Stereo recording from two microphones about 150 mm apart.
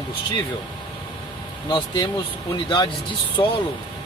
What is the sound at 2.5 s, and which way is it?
Speech, 30° left (ahead or behind).